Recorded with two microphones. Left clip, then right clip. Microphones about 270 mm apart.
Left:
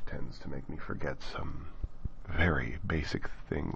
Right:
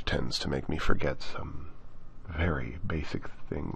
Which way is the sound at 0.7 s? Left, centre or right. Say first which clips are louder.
Right 9 dB; centre.